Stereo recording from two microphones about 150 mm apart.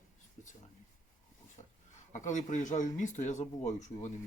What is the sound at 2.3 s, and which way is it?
Speech, 55° left (ahead or behind).